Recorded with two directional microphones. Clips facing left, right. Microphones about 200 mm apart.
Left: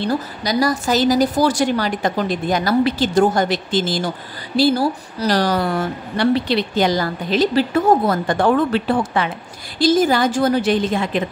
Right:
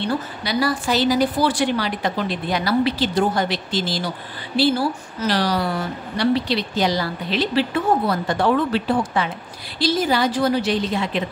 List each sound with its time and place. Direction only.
0.0 s a woman's voice: 40° left (ahead or behind); by 9.3 s 60° left (ahead or behind)
9.8 s a woman's voice: 45° left (ahead or behind)